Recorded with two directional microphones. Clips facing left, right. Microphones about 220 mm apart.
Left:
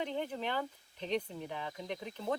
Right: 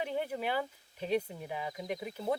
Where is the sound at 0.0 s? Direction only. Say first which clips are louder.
Right 2 dB; 10° right (ahead or behind).